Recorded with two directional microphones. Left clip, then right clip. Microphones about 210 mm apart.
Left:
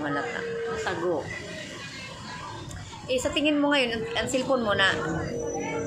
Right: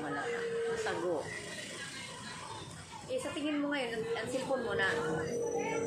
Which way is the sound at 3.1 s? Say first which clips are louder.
Left 11 dB; 45° left (ahead or behind).